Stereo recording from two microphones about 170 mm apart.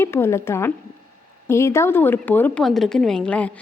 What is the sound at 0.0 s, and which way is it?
A woman's voice, 15° left (ahead or behind).